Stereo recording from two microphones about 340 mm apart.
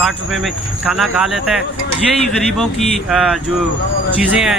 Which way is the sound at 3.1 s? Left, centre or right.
Centre.